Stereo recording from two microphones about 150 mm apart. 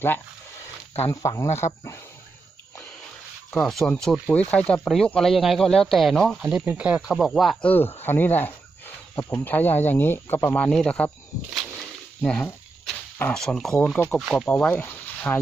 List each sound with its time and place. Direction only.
1.0 s speech: 25° left (ahead or behind)
3.5 s speech: centre (ahead or behind)
7.7 s speech: 15° left (ahead or behind)
12.2 s speech: 5° left (ahead or behind)